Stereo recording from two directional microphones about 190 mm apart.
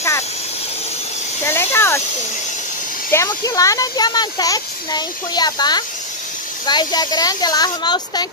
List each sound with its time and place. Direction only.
1.4 s speech: 10° left (ahead or behind)
3.1 s speech: 15° left (ahead or behind)